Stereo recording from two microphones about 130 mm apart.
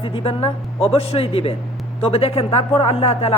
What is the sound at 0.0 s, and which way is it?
Speech, 45° left (ahead or behind).